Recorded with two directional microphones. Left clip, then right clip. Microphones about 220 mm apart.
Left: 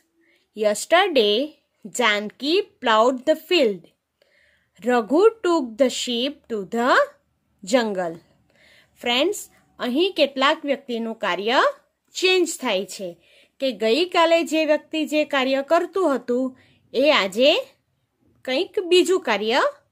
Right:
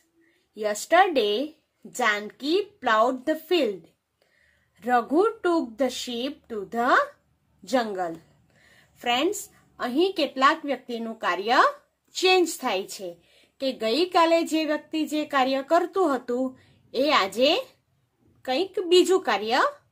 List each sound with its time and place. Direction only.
0.6 s a woman's voice: 40° left (ahead or behind)
4.7 s a woman's voice: 40° left (ahead or behind)